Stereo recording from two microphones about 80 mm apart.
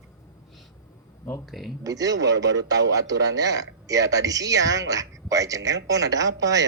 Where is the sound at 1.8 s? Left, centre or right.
Right.